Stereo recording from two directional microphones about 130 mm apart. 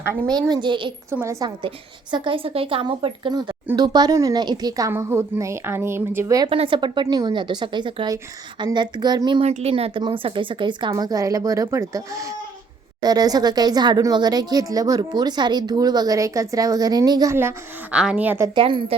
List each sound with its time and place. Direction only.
0.3 s a woman's voice: 30° right (ahead or behind)
1.1 s speech: 20° right (ahead or behind)
1.5 s a woman's voice: 35° right (ahead or behind)
4.9 s speech: 20° right (ahead or behind)
6.5 s a woman's voice: 40° right (ahead or behind)
9.4 s speech: 55° right (ahead or behind); by 17.3 s 25° right (ahead or behind)
17.9 s a woman's voice: 10° right (ahead or behind)
18.5 s a woman's voice: 40° right (ahead or behind)